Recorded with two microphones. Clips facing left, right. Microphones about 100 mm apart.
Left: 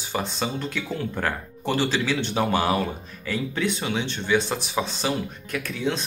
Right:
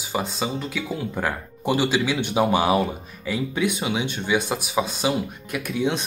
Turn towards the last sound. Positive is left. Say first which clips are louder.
# right 3 dB
turn(degrees=-20)  # may be behind; listen again after turning